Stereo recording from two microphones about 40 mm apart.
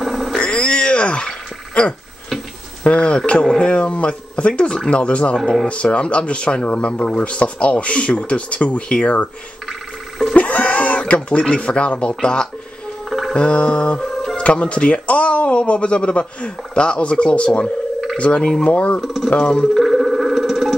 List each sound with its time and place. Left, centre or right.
0.0 s a sound: centre
0.4 s a sound: left
1.8 s speech: left
9.7 s telephone: centre
10.3 s a sound: left
11.4 s speech: left
18.9 s speech: centre
19.3 s speech: left
19.7 s music: centre